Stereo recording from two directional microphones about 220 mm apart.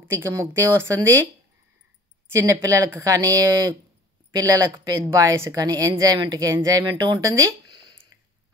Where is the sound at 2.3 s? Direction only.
15° right (ahead or behind).